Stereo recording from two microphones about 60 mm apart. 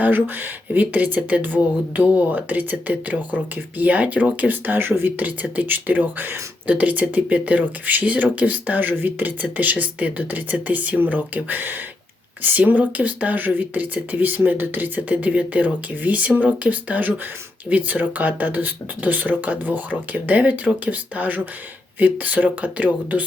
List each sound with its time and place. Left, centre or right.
0.7 s speech: right
5.1 s speech: right